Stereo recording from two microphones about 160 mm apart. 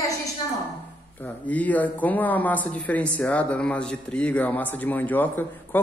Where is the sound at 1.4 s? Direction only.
10° left (ahead or behind).